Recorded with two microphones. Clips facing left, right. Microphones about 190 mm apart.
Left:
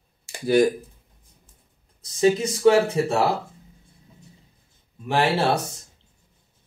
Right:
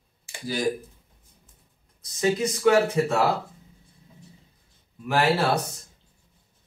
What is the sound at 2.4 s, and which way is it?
Speech, 30° left (ahead or behind).